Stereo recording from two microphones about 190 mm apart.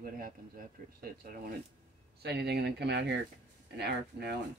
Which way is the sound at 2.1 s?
60° right (ahead or behind).